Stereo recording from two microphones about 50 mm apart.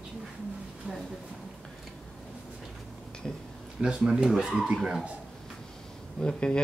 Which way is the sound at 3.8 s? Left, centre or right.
Centre.